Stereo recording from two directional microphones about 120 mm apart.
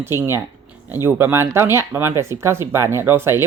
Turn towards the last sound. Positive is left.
turn(degrees=-20)  # may be behind; listen again after turning